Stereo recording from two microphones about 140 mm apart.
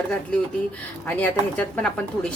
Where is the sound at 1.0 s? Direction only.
10° left (ahead or behind).